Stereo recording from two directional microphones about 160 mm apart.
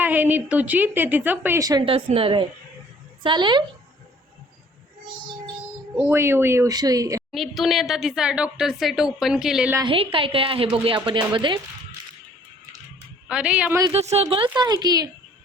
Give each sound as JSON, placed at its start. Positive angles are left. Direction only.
{"t": 0.0, "sound": "a woman's voice", "side_deg": -10}
{"t": 1.6, "sound": "a woman's voice", "side_deg": -30}
{"t": 6.0, "sound": "a woman's voice", "side_deg": -15}
{"t": 7.3, "sound": "speech", "side_deg": 0}
{"t": 9.8, "sound": "a woman's voice", "side_deg": -35}
{"t": 13.2, "sound": "a woman's voice", "side_deg": -5}
{"t": 13.9, "sound": "speech", "side_deg": -40}